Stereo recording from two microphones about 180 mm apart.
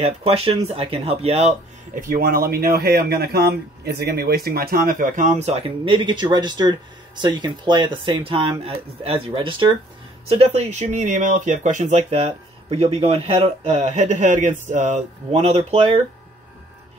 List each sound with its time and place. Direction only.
0.0 s speech: 35° right (ahead or behind)
2.0 s speech: 50° right (ahead or behind); by 16.0 s 35° right (ahead or behind)